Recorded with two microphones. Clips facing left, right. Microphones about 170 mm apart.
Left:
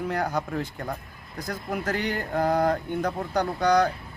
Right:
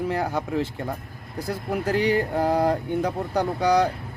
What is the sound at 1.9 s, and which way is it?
Speech, 30° right (ahead or behind).